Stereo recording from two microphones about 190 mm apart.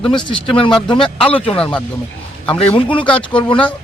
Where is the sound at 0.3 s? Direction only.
25° left (ahead or behind).